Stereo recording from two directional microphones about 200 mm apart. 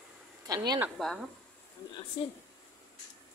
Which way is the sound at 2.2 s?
30° left (ahead or behind).